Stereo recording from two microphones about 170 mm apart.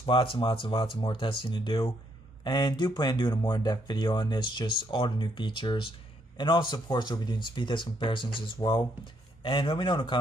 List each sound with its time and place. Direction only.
0.0 s speech: 30° left (ahead or behind)